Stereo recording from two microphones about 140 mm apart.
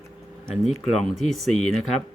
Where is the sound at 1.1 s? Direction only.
Centre (ahead or behind).